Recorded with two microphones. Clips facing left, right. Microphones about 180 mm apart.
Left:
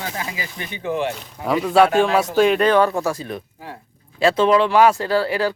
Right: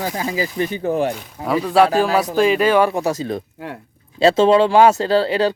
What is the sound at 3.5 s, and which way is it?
Speech, 65° right (ahead or behind).